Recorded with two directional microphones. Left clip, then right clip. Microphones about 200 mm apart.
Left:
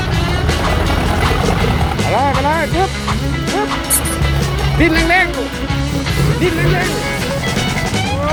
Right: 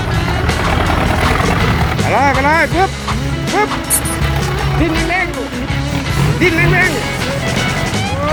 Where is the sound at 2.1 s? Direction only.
5° right (ahead or behind).